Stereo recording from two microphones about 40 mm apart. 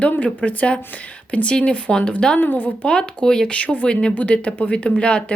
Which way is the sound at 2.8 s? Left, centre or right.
Left.